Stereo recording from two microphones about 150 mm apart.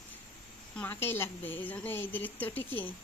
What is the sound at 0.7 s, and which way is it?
Speech, 15° left (ahead or behind).